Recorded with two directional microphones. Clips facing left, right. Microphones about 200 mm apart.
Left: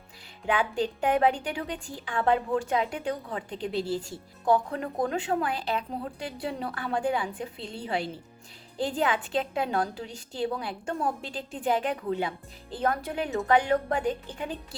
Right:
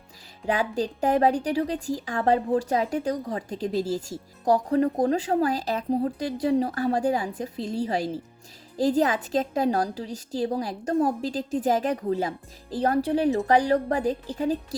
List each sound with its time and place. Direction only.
0.4 s a woman's voice: 40° right (ahead or behind)